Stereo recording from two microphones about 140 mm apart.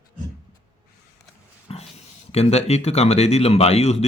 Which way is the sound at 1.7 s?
45° left (ahead or behind).